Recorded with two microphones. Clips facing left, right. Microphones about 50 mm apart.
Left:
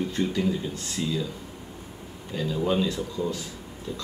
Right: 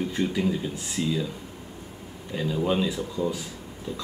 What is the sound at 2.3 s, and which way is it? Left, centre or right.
A man's voice, centre.